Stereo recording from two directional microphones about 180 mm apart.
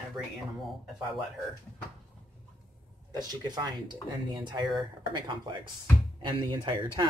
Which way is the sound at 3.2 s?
20° right (ahead or behind).